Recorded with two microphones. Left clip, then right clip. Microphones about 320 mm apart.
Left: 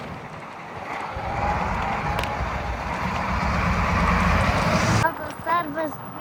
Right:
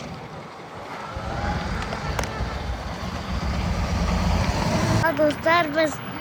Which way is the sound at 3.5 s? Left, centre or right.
Left.